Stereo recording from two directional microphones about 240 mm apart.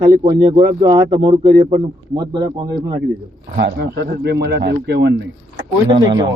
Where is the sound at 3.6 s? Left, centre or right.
Right.